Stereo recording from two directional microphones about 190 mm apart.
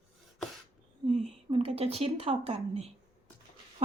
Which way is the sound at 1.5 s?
30° right (ahead or behind).